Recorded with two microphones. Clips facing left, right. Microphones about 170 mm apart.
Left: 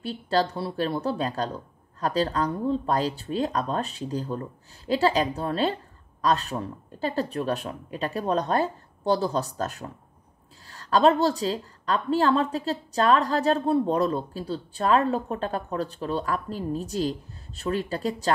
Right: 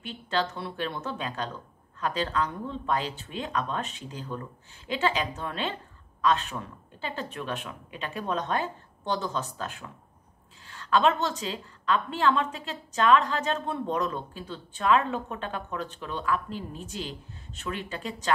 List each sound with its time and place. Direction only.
0.0 s a woman's voice: 35° left (ahead or behind)